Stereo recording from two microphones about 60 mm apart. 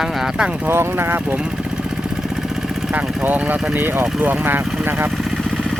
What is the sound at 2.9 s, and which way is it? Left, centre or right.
Speech, right.